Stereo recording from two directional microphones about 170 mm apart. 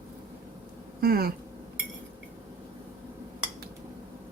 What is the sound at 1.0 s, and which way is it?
Speech, 65° right (ahead or behind).